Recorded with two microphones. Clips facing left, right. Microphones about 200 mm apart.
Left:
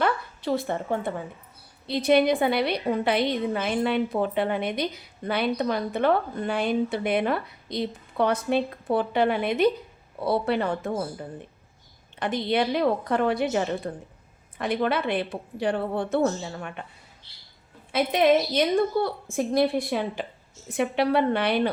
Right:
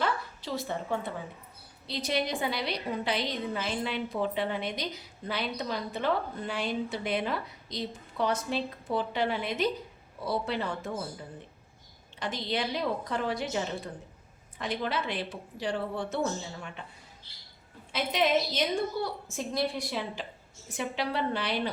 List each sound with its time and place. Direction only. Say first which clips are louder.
0.0 s a sound: left 6 dB; 55° left (ahead or behind)
1.9 s a woman's voice: left 11 dB; 55° left (ahead or behind)
17.9 s a woman's voice: left 7 dB; 55° left (ahead or behind)